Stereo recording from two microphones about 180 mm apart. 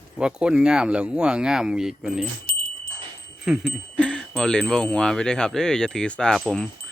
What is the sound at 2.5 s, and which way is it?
Wind chime, 55° left (ahead or behind).